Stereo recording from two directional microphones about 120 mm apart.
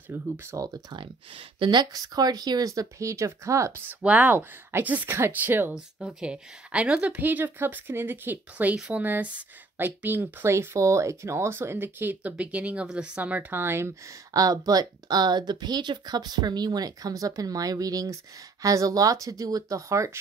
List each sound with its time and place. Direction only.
0.1 s speech: 25° right (ahead or behind)
4.0 s speech: 10° right (ahead or behind)
5.8 s speech: 5° right (ahead or behind); by 20.1 s 25° right (ahead or behind)